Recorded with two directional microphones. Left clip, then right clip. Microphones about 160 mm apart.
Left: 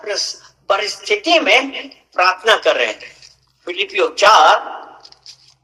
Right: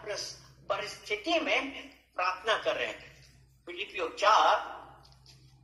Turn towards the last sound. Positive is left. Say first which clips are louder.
# left 18 dB
turn(degrees=70)  # may be behind; listen again after turning